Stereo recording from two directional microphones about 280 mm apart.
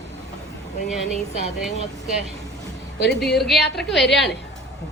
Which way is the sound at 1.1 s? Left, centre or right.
Left.